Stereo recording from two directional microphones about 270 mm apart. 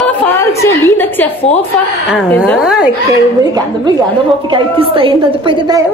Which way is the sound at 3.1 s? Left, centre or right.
Centre.